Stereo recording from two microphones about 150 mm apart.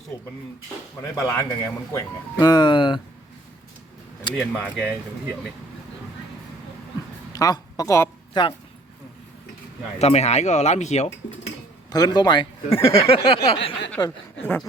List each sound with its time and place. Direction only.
0.1 s speech: 15° left (ahead or behind); by 3.0 s 30° left (ahead or behind)
4.4 s speech: 5° right (ahead or behind)
7.3 s a woman's voice: 25° left (ahead or behind)
8.3 s speech: 30° left (ahead or behind)
10.0 s speech: 45° left (ahead or behind)
11.9 s speech: 25° left (ahead or behind)
12.9 s a sound: 40° left (ahead or behind)
14.0 s speech: 25° left (ahead or behind)